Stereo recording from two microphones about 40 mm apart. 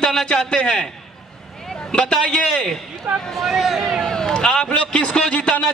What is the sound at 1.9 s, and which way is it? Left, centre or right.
Speech, left.